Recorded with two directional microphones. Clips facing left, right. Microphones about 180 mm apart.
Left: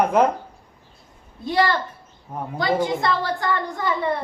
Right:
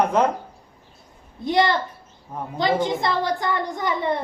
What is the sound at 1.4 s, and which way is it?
A woman's voice, 20° right (ahead or behind).